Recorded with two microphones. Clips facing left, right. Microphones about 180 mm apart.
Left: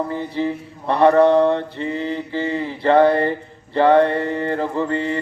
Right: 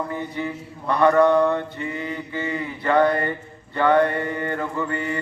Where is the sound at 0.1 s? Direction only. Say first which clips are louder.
Left 5 dB; 30° left (ahead or behind).